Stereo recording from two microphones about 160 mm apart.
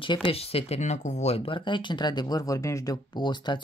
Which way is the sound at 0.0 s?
30° left (ahead or behind).